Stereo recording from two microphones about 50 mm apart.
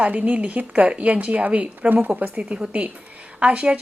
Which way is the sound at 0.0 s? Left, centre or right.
Right.